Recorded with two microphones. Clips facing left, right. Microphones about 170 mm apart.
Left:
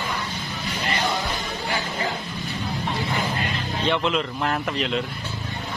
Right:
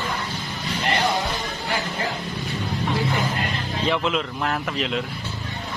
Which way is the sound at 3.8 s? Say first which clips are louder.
Even; centre (ahead or behind).